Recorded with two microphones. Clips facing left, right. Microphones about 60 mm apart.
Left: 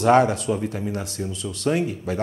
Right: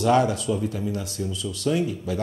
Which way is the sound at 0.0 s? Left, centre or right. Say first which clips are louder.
Left 3 dB; left.